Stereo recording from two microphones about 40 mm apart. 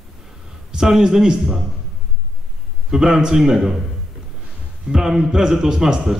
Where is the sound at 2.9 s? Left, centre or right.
Centre.